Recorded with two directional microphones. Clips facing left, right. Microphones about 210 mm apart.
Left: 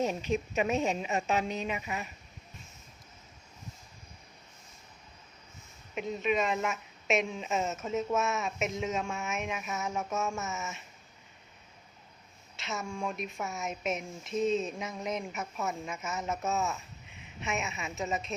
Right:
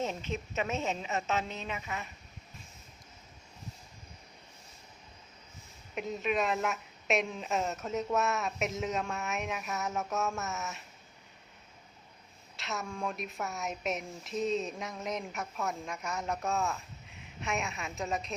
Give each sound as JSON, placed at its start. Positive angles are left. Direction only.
{"t": 0.0, "sound": "a woman's voice", "side_deg": 15}
{"t": 5.9, "sound": "speech", "side_deg": 0}
{"t": 12.5, "sound": "speech", "side_deg": 0}